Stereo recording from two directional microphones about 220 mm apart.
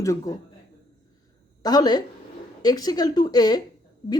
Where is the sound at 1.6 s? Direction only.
20° left (ahead or behind).